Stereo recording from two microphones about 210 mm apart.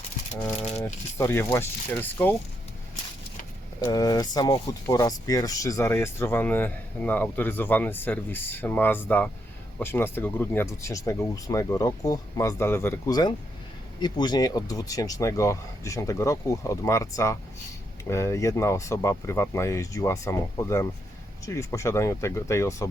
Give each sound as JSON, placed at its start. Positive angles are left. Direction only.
{"t": 1.2, "sound": "speech", "side_deg": 10}
{"t": 3.8, "sound": "speech", "side_deg": 15}